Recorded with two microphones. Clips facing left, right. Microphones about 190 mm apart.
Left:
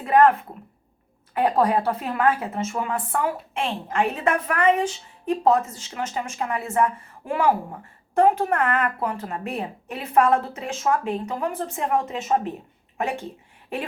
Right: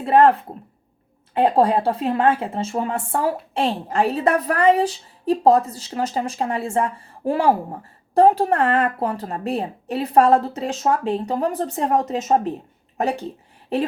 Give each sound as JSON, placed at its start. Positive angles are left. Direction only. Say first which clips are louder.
{"t": 0.0, "sound": "speech", "louder": "right 2 dB", "side_deg": -30}